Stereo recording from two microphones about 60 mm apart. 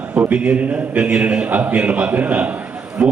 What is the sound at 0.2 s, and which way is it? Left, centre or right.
A man's voice, right.